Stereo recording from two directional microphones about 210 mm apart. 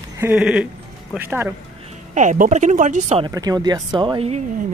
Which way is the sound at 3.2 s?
15° right (ahead or behind).